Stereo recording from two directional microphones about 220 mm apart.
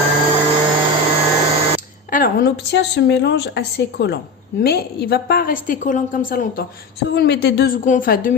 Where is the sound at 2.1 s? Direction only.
45° left (ahead or behind).